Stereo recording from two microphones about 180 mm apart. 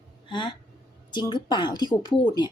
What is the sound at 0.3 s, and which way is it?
A woman's voice, 25° left (ahead or behind).